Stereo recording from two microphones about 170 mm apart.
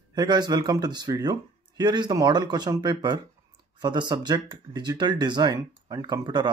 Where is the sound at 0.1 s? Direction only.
25° right (ahead or behind).